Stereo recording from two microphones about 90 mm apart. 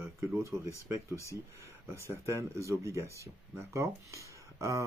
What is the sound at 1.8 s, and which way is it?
Speech, 30° right (ahead or behind).